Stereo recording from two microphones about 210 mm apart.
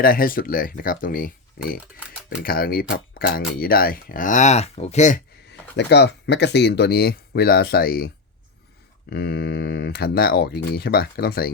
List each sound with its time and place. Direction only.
0.0 s speech: 45° left (ahead or behind)
5.5 s speech: 55° left (ahead or behind)